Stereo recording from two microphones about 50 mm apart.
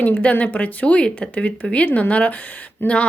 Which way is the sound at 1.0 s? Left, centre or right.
Centre.